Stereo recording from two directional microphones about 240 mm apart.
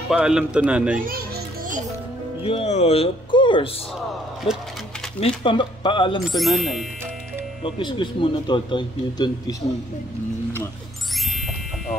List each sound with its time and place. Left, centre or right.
0.1 s speech: centre
2.4 s a man's voice: left
6.3 s speech: centre
7.6 s a man's voice: centre